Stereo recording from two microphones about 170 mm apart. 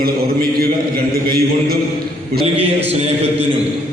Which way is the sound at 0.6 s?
60° right (ahead or behind).